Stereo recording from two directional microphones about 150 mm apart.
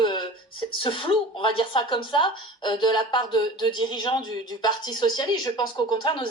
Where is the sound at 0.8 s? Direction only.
35° left (ahead or behind).